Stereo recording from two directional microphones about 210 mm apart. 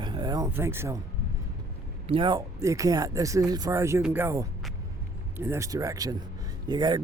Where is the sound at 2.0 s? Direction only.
25° right (ahead or behind).